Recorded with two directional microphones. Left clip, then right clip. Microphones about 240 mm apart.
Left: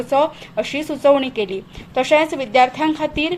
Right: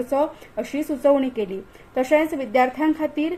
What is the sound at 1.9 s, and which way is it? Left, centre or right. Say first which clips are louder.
Speech: left 4 dB; left.